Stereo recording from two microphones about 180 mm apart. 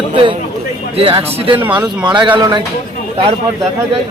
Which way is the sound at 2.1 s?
25° right (ahead or behind).